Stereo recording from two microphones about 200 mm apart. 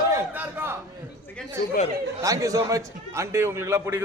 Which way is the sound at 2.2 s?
15° right (ahead or behind).